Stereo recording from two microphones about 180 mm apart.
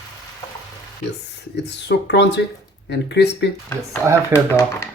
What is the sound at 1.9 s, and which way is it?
Speech, 70° left (ahead or behind).